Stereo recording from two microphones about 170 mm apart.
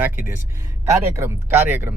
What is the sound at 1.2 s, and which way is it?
Speech, 15° right (ahead or behind).